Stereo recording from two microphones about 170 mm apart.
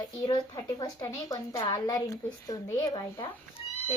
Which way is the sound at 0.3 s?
20° left (ahead or behind).